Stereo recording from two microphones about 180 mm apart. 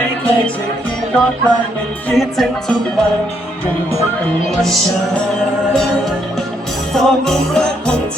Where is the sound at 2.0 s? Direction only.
Centre (ahead or behind).